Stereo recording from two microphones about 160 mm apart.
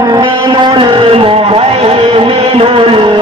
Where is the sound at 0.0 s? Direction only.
30° right (ahead or behind).